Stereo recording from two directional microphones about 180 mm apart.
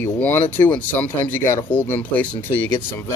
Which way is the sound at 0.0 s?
10° left (ahead or behind).